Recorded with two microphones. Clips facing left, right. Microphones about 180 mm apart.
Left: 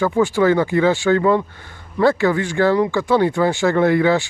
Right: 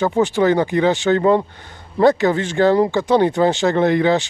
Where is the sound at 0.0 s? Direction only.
20° right (ahead or behind).